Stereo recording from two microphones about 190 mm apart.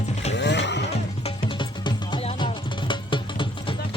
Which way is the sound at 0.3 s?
65° left (ahead or behind).